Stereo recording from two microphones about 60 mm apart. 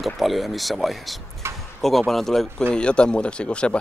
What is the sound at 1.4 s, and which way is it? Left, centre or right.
Speech, right.